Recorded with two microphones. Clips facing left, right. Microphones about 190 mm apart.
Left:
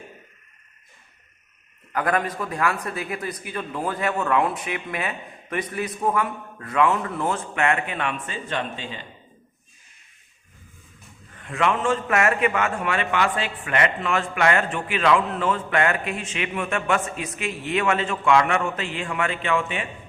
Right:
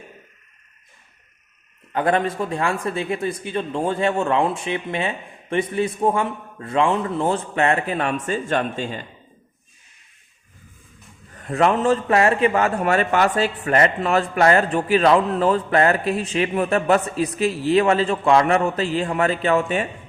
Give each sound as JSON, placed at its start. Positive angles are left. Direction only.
{"t": 1.9, "sound": "speech", "side_deg": -25}
{"t": 11.3, "sound": "a man's voice", "side_deg": -40}